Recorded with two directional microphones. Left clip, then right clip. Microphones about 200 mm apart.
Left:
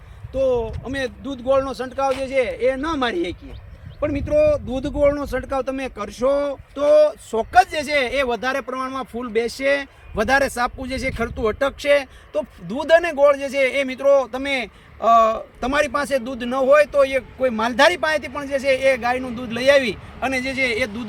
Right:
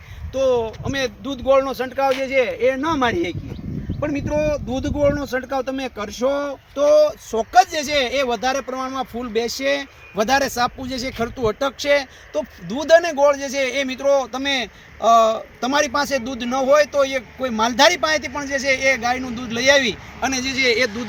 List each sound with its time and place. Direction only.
0.3 s speech: 20° right (ahead or behind)
7.3 s speech: 10° right (ahead or behind); by 19.8 s 10° left (ahead or behind)
20.2 s speech: 65° left (ahead or behind); by 21.0 s 80° left